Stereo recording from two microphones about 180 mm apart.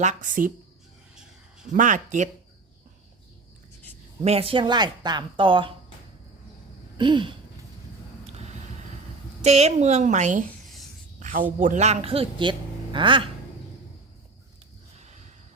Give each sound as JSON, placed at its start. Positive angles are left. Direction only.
{"t": 0.0, "sound": "speech", "side_deg": -45}
{"t": 1.1, "sound": "a sound", "side_deg": -5}
{"t": 1.7, "sound": "speech", "side_deg": -45}
{"t": 4.2, "sound": "speech", "side_deg": -35}
{"t": 6.9, "sound": "a sound", "side_deg": -25}
{"t": 8.3, "sound": "vehicle", "side_deg": -35}
{"t": 9.4, "sound": "speech", "side_deg": -35}
{"t": 11.2, "sound": "a sound", "side_deg": -45}
{"t": 11.6, "sound": "speech", "side_deg": -40}